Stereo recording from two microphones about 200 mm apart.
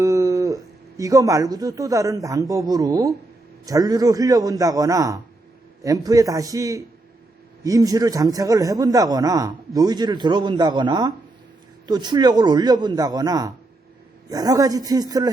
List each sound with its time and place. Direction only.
0.0 s a man's voice: 15° right (ahead or behind)